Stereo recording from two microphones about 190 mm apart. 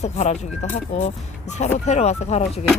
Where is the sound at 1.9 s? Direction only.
35° left (ahead or behind).